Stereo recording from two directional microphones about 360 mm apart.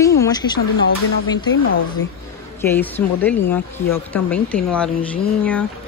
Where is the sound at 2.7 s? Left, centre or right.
Centre.